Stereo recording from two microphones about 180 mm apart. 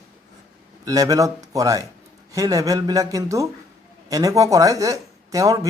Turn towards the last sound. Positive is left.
turn(degrees=-20)  # may be behind; listen again after turning